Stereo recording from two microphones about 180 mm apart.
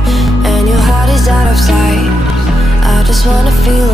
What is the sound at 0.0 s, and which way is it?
Music, centre (ahead or behind).